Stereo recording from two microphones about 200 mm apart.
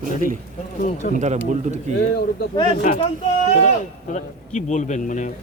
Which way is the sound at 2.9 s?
40° left (ahead or behind).